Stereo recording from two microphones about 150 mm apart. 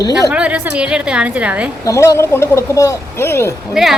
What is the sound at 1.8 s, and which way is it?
Speech, 20° left (ahead or behind).